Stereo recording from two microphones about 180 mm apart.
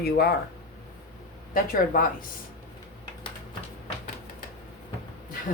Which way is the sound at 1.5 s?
50° left (ahead or behind).